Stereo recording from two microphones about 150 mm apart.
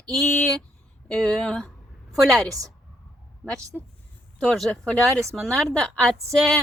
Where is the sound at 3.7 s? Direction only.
5° right (ahead or behind).